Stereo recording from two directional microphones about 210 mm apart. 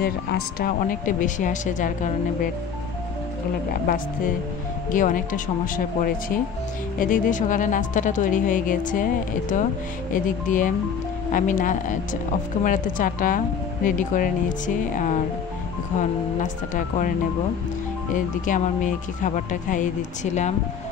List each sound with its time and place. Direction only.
0.0 s speech: 45° left (ahead or behind)
3.8 s speech: 40° left (ahead or behind)
7.0 s speech: 40° left (ahead or behind)
16.0 s speech: 35° left (ahead or behind)
18.1 s speech: 40° left (ahead or behind)